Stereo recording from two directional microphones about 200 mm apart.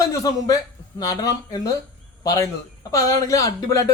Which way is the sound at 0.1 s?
20° left (ahead or behind).